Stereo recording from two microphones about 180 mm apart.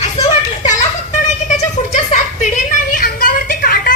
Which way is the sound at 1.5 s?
40° left (ahead or behind).